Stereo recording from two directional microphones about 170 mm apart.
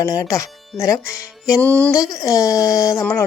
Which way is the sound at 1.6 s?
10° left (ahead or behind).